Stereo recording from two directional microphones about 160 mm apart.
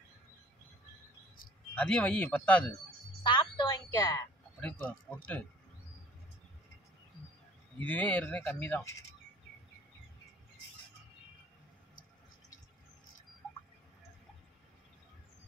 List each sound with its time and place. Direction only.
1.8 s speech: 10° left (ahead or behind)
3.3 s a sound: 30° left (ahead or behind)
4.6 s speech: 10° left (ahead or behind)
7.8 s speech: 10° left (ahead or behind)